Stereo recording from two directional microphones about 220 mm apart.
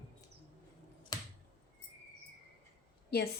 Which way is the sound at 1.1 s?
20° left (ahead or behind).